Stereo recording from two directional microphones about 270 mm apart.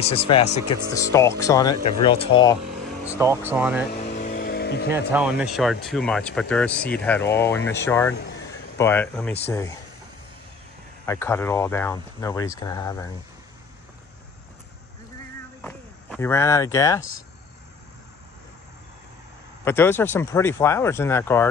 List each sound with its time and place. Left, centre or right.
0.0 s speech: left
3.1 s speech: centre
4.1 s vehicle: left
4.9 s speech: centre
11.1 s speech: centre
15.6 s a sound: centre
19.6 s speech: centre